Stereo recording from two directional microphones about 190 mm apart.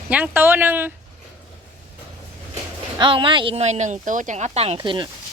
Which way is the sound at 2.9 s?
25° right (ahead or behind).